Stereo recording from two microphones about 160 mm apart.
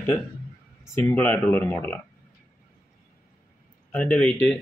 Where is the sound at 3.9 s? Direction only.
10° left (ahead or behind).